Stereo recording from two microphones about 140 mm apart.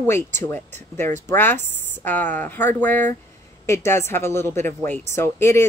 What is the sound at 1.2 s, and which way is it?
Speech, 15° left (ahead or behind).